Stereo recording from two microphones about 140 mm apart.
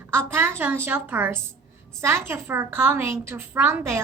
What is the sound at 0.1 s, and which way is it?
A woman's voice, 15° right (ahead or behind).